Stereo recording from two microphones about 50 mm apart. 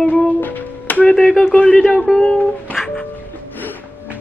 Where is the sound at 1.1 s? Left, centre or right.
Left.